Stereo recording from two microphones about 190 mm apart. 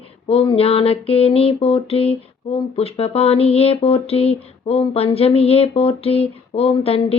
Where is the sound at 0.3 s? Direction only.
30° left (ahead or behind).